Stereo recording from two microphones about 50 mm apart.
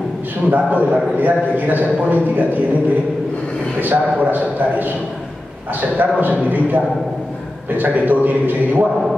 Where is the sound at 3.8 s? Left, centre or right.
Right.